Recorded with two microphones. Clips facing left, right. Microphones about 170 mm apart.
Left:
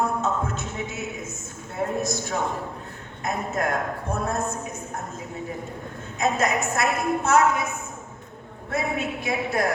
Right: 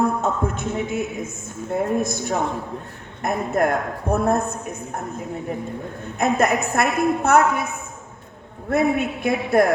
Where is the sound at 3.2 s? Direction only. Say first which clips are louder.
Right 6 dB; 55° right (ahead or behind).